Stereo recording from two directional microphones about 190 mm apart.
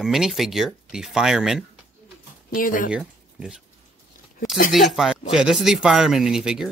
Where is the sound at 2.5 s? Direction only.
45° left (ahead or behind).